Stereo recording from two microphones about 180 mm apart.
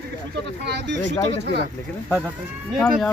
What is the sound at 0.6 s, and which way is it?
Speech, 75° right (ahead or behind).